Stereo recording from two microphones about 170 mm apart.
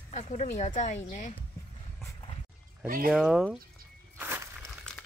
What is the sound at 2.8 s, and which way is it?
Speech, 55° right (ahead or behind).